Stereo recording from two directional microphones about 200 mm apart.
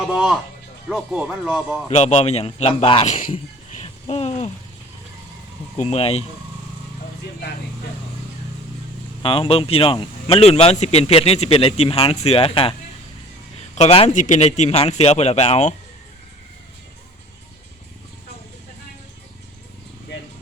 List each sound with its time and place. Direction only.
0.9 s speech: centre (ahead or behind)
1.9 s a man's voice: 35° left (ahead or behind)
3.3 s a sound: 30° left (ahead or behind)
5.7 s a man's voice: 35° left (ahead or behind)
9.2 s speech: 30° left (ahead or behind)
13.7 s a man's voice: 30° left (ahead or behind)